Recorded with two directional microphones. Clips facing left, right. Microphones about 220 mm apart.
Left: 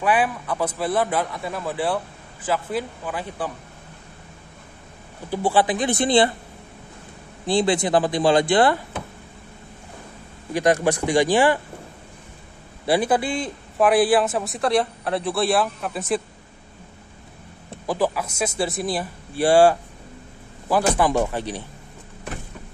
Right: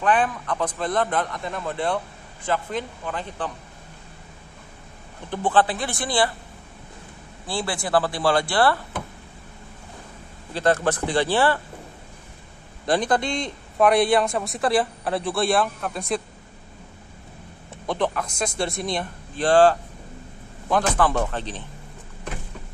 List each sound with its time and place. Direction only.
0.0 s speech: 10° left (ahead or behind)
5.3 s speech: 10° left (ahead or behind)
7.4 s speech: 20° left (ahead or behind)
10.5 s speech: 15° left (ahead or behind)
12.8 s a man's voice: 10° left (ahead or behind)
17.8 s speech: 5° left (ahead or behind)